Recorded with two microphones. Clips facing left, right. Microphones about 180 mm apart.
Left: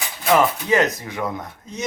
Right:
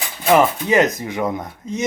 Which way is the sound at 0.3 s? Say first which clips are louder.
Right 2 dB; 20° right (ahead or behind).